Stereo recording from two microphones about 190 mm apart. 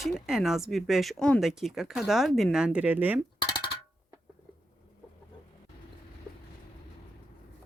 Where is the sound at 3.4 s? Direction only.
25° left (ahead or behind).